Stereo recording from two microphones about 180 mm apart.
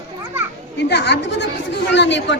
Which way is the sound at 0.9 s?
70° left (ahead or behind).